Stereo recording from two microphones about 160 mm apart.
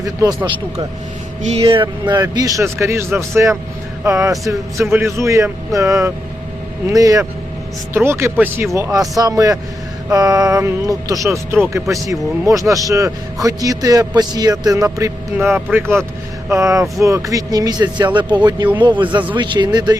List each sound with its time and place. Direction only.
0.0 s speech: 25° right (ahead or behind)
1.4 s speech: 40° right (ahead or behind)
2.1 s speech: 20° right (ahead or behind)